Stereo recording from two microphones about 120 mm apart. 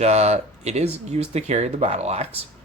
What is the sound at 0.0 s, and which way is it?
Speech, 65° right (ahead or behind).